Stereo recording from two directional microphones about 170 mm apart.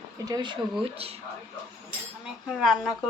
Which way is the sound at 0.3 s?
20° right (ahead or behind).